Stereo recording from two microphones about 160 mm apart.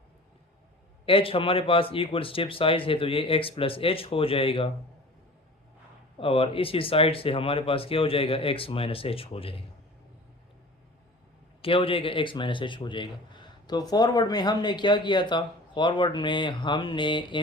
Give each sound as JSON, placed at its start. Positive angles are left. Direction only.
{"t": 1.0, "sound": "speech", "side_deg": 35}
{"t": 6.1, "sound": "speech", "side_deg": 35}
{"t": 11.6, "sound": "a man's voice", "side_deg": 35}